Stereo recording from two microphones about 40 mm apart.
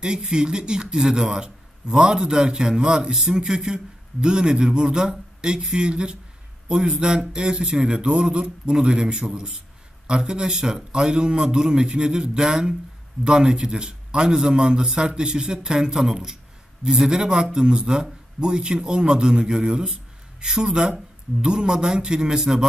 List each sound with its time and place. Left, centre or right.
0.0 s speech: centre